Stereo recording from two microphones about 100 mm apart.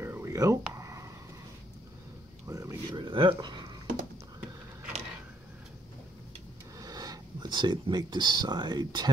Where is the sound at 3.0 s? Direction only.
55° right (ahead or behind).